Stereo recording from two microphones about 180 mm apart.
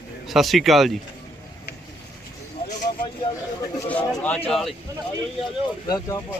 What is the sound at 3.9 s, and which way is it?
Bird, 10° left (ahead or behind).